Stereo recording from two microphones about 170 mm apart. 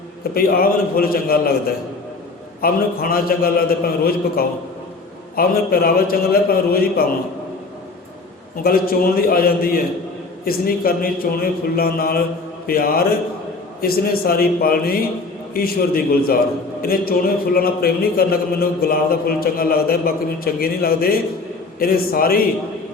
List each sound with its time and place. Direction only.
0.3 s a man's voice: 60° left (ahead or behind)
2.6 s a man's voice: 60° left (ahead or behind)
8.6 s a man's voice: 60° left (ahead or behind)